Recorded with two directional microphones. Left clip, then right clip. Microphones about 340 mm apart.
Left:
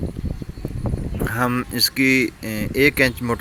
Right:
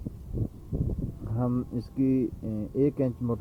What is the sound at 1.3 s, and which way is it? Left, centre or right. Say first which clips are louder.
Speech: left 10 dB; left.